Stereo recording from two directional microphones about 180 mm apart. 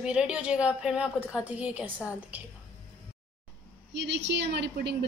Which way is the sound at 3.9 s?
75° right (ahead or behind).